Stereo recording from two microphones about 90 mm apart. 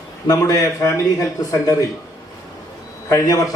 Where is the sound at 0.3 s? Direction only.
40° left (ahead or behind).